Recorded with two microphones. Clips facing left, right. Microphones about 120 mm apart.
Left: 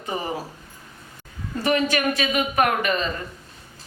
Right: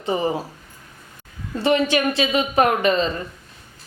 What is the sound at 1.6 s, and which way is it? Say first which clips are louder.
Speech: right 3 dB; 25° right (ahead or behind).